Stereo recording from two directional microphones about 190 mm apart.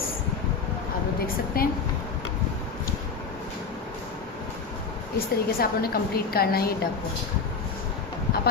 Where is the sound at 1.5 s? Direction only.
50° left (ahead or behind).